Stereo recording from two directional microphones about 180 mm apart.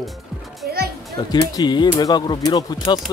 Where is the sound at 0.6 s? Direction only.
55° right (ahead or behind).